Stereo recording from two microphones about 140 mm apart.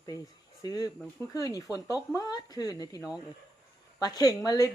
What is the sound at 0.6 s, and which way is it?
A woman's voice, 25° left (ahead or behind).